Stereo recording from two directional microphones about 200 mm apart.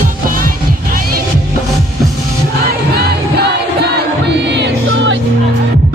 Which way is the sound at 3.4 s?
55° right (ahead or behind).